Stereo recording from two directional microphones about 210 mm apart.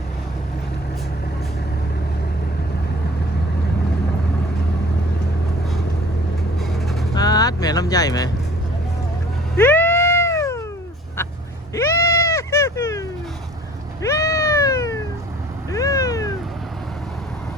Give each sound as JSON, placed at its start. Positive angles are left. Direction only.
{"t": 7.1, "sound": "vehicle", "side_deg": 20}
{"t": 9.6, "sound": "cat", "side_deg": 10}
{"t": 11.7, "sound": "goat", "side_deg": 15}
{"t": 14.0, "sound": "cat", "side_deg": 15}